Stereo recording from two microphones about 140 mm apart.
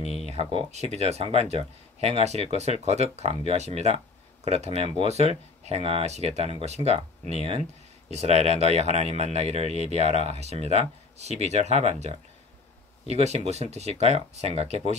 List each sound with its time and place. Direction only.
0.3 s speech: 40° right (ahead or behind)
0.7 s speech: 50° right (ahead or behind)